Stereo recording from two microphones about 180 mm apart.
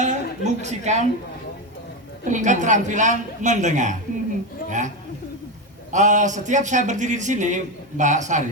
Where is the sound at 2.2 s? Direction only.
45° right (ahead or behind).